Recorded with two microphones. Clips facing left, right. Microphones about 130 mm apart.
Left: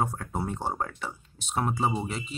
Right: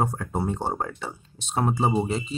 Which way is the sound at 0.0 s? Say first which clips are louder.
Right 4 dB; 35° right (ahead or behind).